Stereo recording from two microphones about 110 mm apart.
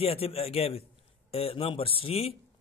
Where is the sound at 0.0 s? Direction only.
60° left (ahead or behind).